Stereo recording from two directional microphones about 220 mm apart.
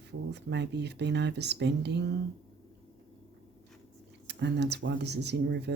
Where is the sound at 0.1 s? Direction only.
50° right (ahead or behind).